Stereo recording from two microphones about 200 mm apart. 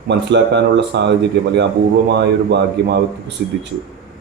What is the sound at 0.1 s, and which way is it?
Speech, 60° right (ahead or behind).